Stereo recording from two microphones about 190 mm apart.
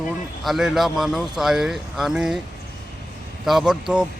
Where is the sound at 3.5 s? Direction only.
Centre (ahead or behind).